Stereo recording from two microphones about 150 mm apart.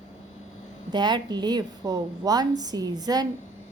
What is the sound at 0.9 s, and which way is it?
A woman's voice, 30° right (ahead or behind).